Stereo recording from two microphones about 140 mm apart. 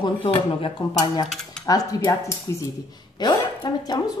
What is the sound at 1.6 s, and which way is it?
A woman's voice, 25° left (ahead or behind).